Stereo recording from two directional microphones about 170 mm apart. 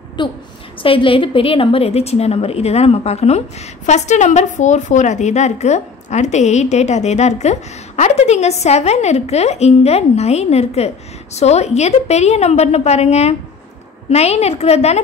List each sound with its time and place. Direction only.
0.2 s a woman's voice: 25° left (ahead or behind)